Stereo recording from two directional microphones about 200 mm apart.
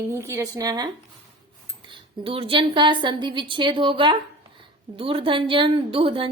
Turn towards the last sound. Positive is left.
turn(degrees=-25)  # may be behind; listen again after turning